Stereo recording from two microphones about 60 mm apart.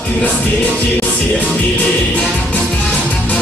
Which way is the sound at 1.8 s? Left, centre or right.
Left.